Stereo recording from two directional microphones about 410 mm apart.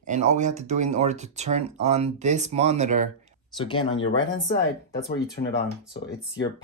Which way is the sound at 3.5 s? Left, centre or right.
Centre.